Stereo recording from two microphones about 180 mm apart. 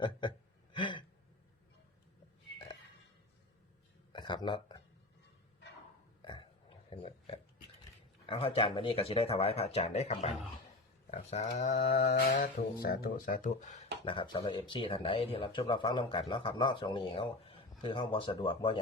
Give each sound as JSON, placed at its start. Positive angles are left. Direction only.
{"t": 0.0, "sound": "a sound", "side_deg": 25}
{"t": 4.1, "sound": "a sound", "side_deg": 25}
{"t": 6.2, "sound": "burping", "side_deg": 25}
{"t": 8.3, "sound": "speech", "side_deg": 30}
{"t": 12.0, "sound": "speech", "side_deg": 60}
{"t": 14.0, "sound": "speech", "side_deg": 25}